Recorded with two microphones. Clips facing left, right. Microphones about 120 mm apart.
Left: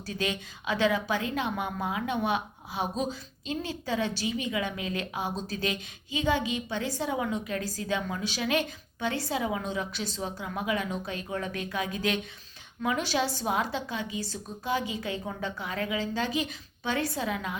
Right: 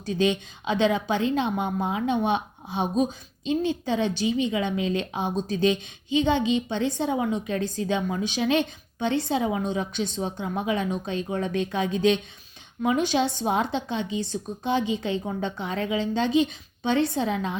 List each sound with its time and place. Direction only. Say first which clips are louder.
0.0 s a woman's voice: right 8 dB; 20° right (ahead or behind)